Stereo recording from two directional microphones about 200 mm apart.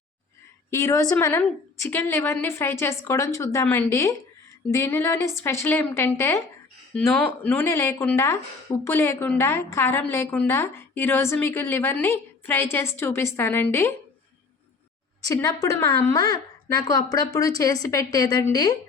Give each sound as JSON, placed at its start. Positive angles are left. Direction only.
{"t": 0.7, "sound": "a woman's voice", "side_deg": 15}
{"t": 15.2, "sound": "a woman's voice", "side_deg": 15}